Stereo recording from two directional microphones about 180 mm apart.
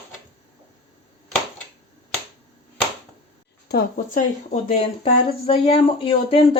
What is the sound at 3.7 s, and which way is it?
A woman's voice, 55° left (ahead or behind).